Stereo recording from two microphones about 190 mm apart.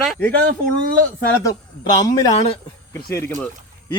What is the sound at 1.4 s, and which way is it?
Speech, 20° left (ahead or behind).